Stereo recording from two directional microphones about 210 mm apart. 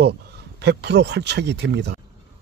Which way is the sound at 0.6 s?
55° right (ahead or behind).